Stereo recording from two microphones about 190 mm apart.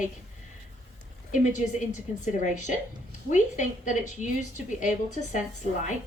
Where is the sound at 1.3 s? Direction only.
40° left (ahead or behind).